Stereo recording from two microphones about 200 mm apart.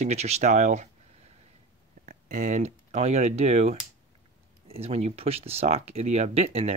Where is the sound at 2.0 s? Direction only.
40° right (ahead or behind).